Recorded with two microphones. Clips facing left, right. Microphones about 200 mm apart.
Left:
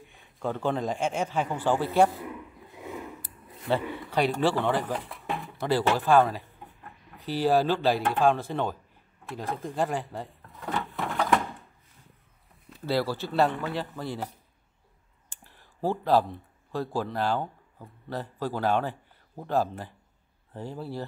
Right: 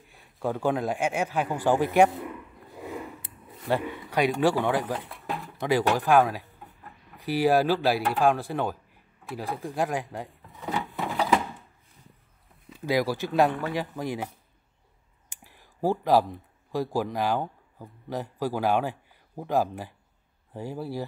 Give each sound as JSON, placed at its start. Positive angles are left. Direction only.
{"t": 0.0, "sound": "a man's voice", "side_deg": 0}
{"t": 3.5, "sound": "a man's voice", "side_deg": -10}
{"t": 4.9, "sound": "a sound", "side_deg": 0}
{"t": 5.9, "sound": "a man's voice", "side_deg": -15}
{"t": 10.4, "sound": "drawer open or close", "side_deg": 0}
{"t": 10.9, "sound": "a sound", "side_deg": 0}
{"t": 12.8, "sound": "a man's voice", "side_deg": -15}
{"t": 15.4, "sound": "a sound", "side_deg": -15}
{"t": 16.7, "sound": "a man's voice", "side_deg": -15}